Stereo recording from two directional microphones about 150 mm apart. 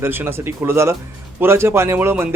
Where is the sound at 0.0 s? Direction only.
15° right (ahead or behind).